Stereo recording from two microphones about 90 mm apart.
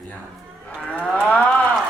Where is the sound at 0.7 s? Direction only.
15° left (ahead or behind).